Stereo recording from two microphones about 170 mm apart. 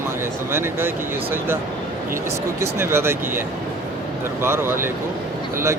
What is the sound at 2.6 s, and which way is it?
Speech, 15° right (ahead or behind).